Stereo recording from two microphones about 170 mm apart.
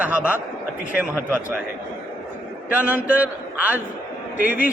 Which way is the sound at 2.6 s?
10° right (ahead or behind).